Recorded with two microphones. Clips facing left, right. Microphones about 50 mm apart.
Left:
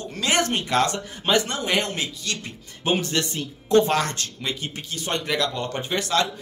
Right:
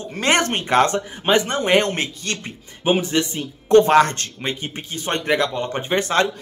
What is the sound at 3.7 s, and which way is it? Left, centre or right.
Speech, right.